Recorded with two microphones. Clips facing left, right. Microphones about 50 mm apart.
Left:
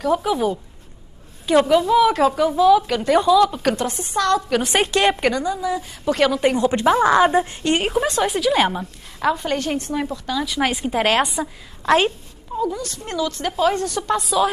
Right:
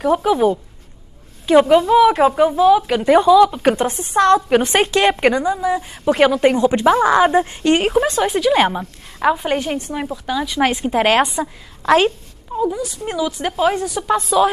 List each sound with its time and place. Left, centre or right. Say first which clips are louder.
0.0 s a woman's voice: right 4 dB; centre
1.7 s a woman's voice: right 4 dB; right
4.8 s a woman's voice: right 3 dB; centre
8.0 s a woman's voice: right 3 dB; centre
12.5 s a woman's voice: right 3 dB; centre